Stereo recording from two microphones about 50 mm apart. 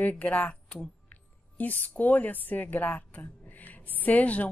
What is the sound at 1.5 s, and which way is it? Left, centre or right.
A woman's voice, left.